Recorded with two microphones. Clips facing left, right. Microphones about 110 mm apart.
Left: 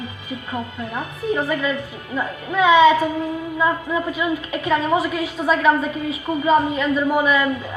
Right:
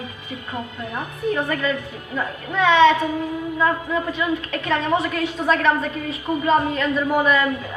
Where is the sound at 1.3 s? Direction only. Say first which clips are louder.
Left 2 dB; 5° left (ahead or behind).